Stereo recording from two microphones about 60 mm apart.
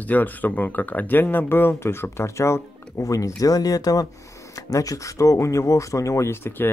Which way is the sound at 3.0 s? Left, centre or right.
Left.